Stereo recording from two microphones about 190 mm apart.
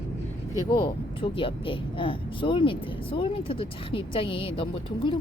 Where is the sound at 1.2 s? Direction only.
25° left (ahead or behind).